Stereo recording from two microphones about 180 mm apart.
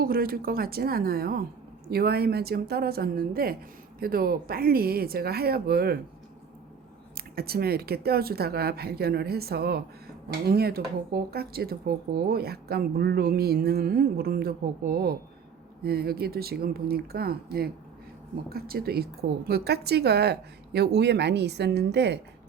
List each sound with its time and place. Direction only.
0.0 s speech: 55° right (ahead or behind)
7.3 s a woman's voice: 60° right (ahead or behind)